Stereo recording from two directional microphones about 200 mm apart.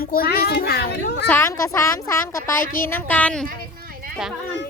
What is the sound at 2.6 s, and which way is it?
Speech, 45° left (ahead or behind).